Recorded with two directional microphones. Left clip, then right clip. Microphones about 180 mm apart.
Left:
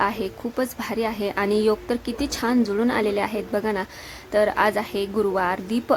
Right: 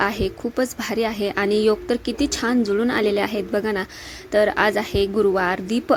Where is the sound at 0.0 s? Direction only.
15° right (ahead or behind).